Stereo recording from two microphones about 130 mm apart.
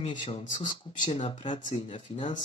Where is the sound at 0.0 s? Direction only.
40° left (ahead or behind).